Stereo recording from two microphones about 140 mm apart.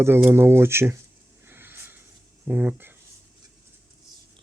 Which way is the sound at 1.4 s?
15° right (ahead or behind).